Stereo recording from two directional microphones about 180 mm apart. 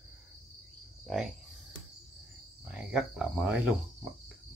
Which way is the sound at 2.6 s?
5° right (ahead or behind).